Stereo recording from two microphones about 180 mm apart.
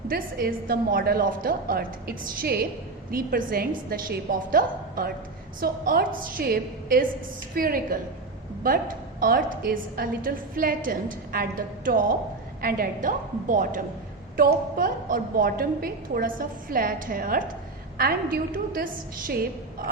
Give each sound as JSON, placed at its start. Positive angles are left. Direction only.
{"t": 0.1, "sound": "a woman's voice", "side_deg": -55}